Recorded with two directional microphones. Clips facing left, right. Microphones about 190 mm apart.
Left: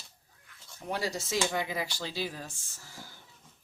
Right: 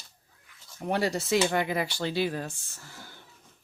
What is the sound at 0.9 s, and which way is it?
Speech, 60° right (ahead or behind).